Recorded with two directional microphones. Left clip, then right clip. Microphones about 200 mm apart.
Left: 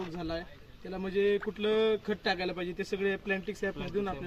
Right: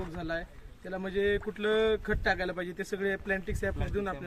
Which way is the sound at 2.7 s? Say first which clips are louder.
Left 1 dB; centre (ahead or behind).